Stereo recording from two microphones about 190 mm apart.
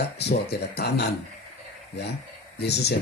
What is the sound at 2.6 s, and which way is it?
Speech, 60° left (ahead or behind).